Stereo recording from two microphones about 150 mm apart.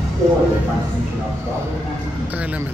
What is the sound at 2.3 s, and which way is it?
Speech, 10° right (ahead or behind).